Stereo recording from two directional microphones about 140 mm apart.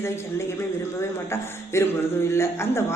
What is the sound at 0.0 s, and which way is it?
A woman's voice, 20° left (ahead or behind).